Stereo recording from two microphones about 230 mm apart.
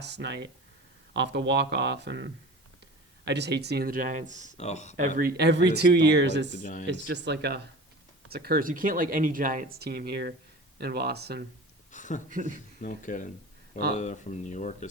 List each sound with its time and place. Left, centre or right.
0.0 s speech: right
4.5 s speech: left
4.9 s speech: right
6.6 s speech: left
7.1 s speech: right
11.9 s a sound: left
12.3 s speech: right
12.8 s speech: left